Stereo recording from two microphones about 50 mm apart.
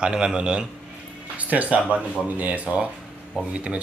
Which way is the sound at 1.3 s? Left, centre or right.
Right.